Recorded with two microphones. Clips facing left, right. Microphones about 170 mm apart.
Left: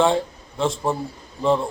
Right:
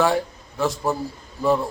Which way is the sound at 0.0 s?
25° left (ahead or behind).